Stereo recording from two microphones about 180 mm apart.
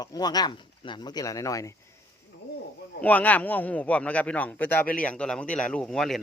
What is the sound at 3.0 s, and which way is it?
Speech, 10° left (ahead or behind).